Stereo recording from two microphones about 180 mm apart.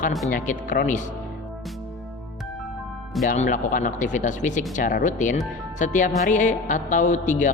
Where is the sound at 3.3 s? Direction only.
45° left (ahead or behind).